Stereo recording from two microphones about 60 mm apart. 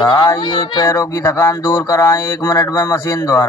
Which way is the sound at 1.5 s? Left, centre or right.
Left.